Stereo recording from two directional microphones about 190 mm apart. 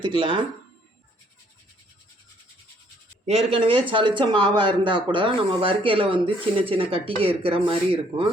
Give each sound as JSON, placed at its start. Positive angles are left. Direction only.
{"t": 0.0, "sound": "speech", "side_deg": -25}
{"t": 3.2, "sound": "speech", "side_deg": -30}